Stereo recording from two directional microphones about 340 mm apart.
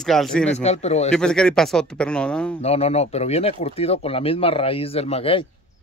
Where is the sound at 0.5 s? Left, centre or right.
Centre.